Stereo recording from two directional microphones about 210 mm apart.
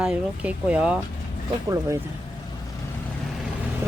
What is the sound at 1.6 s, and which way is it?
Speech, 15° right (ahead or behind).